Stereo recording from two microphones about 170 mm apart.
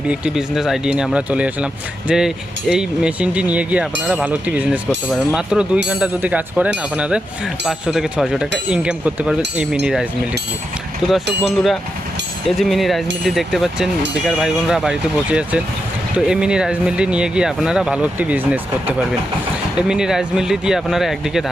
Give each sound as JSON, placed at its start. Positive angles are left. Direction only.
{"t": 0.1, "sound": "speech", "side_deg": -5}
{"t": 19.9, "sound": "speech", "side_deg": -5}